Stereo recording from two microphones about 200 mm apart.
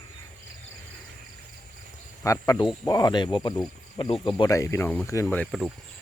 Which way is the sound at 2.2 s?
15° left (ahead or behind).